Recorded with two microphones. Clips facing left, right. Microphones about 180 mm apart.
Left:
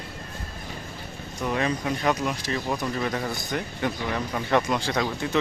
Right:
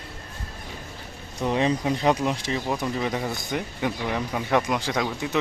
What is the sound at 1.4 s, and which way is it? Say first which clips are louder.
Speech: right 3 dB; 25° right (ahead or behind).